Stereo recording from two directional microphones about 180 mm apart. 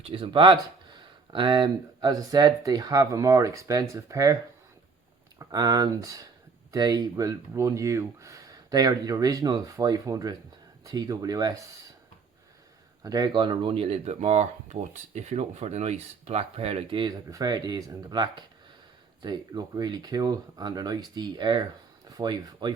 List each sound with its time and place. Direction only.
0.0 s speech: 30° right (ahead or behind)
5.4 s speech: 20° right (ahead or behind)
13.0 s speech: 20° right (ahead or behind)